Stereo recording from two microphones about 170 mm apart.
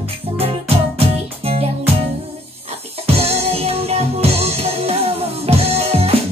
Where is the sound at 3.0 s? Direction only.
35° right (ahead or behind).